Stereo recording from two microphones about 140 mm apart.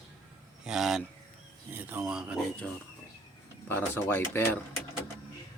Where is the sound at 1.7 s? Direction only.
15° right (ahead or behind).